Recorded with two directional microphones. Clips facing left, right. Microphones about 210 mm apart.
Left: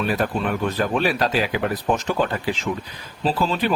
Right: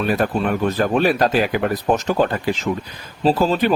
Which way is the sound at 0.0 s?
45° right (ahead or behind).